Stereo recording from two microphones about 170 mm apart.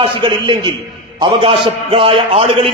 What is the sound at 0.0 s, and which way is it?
A man's voice, 30° right (ahead or behind).